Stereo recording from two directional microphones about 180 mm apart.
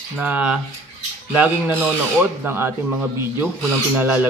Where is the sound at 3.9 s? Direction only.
10° right (ahead or behind).